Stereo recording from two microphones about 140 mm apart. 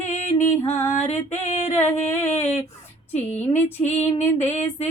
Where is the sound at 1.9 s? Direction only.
15° left (ahead or behind).